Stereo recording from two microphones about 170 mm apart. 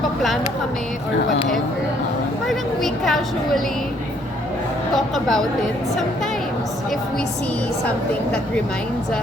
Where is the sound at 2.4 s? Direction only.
Centre (ahead or behind).